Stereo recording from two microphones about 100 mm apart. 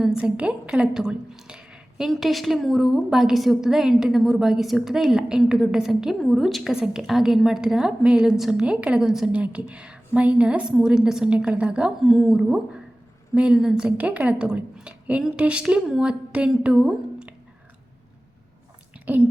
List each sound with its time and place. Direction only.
0.0 s a woman's voice: 5° right (ahead or behind)
19.0 s a woman's voice: 15° right (ahead or behind)